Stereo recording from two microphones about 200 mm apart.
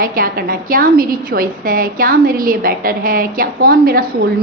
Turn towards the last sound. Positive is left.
turn(degrees=-50)  # may be behind; listen again after turning